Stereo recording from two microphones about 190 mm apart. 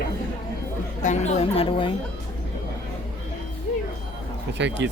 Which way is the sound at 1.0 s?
35° left (ahead or behind).